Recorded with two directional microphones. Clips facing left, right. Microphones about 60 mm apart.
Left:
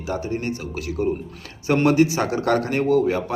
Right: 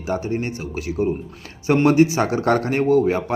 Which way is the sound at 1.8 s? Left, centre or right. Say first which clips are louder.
Right 2 dB; right.